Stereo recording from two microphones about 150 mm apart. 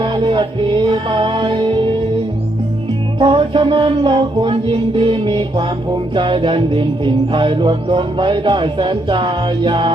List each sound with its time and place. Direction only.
0.0 s music: 30° right (ahead or behind)
3.2 s music: 30° right (ahead or behind)